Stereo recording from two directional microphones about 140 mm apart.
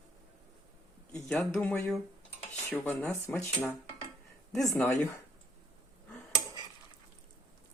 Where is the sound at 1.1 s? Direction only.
5° left (ahead or behind).